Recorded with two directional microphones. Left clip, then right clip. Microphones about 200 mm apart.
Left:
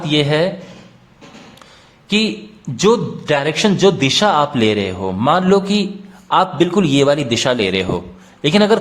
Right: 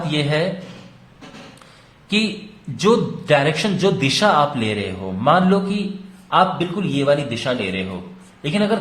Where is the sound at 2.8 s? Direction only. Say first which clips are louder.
Left 3 dB; 30° left (ahead or behind).